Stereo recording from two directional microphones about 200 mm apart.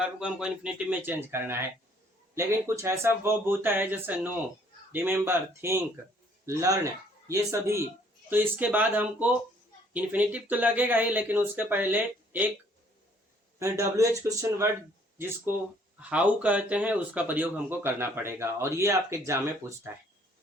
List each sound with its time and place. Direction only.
0.0 s a man's voice: 5° right (ahead or behind)
13.6 s speech: 15° right (ahead or behind)